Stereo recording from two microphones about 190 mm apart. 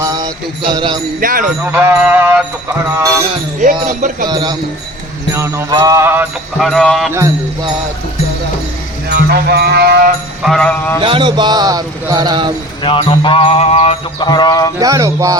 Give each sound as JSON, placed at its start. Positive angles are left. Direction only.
{"t": 0.0, "sound": "jingle bell", "side_deg": -20}
{"t": 1.2, "sound": "speech", "side_deg": -45}
{"t": 1.7, "sound": "music", "side_deg": -10}
{"t": 3.8, "sound": "speech", "side_deg": -45}
{"t": 4.3, "sound": "speech", "side_deg": -20}
{"t": 5.3, "sound": "music", "side_deg": -15}
{"t": 6.6, "sound": "speech", "side_deg": 0}
{"t": 7.1, "sound": "music", "side_deg": -15}
{"t": 9.0, "sound": "music", "side_deg": -60}
{"t": 10.4, "sound": "speech", "side_deg": 5}
{"t": 11.0, "sound": "speech", "side_deg": -25}
{"t": 12.8, "sound": "a sound", "side_deg": 25}
{"t": 14.8, "sound": "music", "side_deg": -15}